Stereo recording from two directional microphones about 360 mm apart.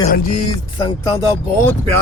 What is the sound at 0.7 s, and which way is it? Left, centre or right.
Chopping, centre.